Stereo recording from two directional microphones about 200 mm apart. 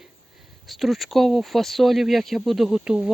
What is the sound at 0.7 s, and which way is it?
Speech, centre (ahead or behind).